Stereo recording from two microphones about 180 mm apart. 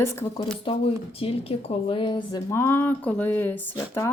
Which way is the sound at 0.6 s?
30° left (ahead or behind).